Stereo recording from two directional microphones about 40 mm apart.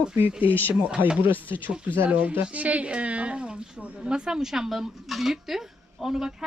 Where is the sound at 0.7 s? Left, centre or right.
Right.